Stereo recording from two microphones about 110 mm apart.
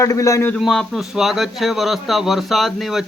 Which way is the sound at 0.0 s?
30° left (ahead or behind).